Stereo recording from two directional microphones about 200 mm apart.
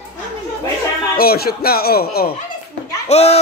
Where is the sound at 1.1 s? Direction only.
50° left (ahead or behind).